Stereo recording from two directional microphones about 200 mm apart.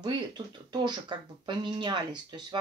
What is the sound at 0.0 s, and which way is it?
Speech, 20° right (ahead or behind).